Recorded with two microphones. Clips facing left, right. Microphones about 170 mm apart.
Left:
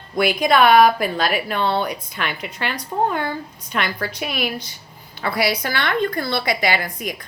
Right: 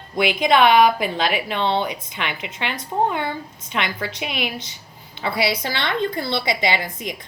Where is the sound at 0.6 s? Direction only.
45° left (ahead or behind).